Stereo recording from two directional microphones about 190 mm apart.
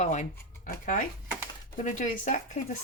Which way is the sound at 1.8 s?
40° left (ahead or behind).